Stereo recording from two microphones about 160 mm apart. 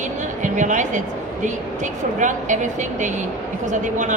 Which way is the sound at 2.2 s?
50° right (ahead or behind).